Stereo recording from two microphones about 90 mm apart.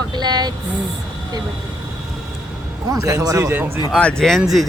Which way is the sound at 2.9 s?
40° right (ahead or behind).